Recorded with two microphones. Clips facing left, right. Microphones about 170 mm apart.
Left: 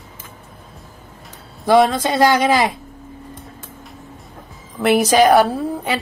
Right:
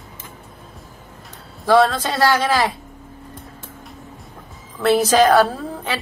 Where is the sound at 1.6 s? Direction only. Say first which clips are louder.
Left 2 dB; 15° left (ahead or behind).